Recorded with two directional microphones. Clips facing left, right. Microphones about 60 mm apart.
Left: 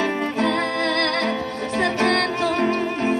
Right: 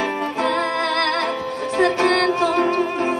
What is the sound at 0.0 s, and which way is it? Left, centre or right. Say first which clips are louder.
Music: even; right.